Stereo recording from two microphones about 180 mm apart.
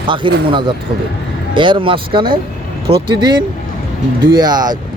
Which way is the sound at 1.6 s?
30° right (ahead or behind).